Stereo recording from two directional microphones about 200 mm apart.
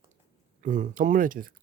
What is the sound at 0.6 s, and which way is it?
Speech, 40° right (ahead or behind).